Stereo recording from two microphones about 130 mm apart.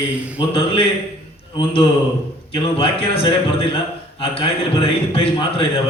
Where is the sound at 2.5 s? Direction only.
45° left (ahead or behind).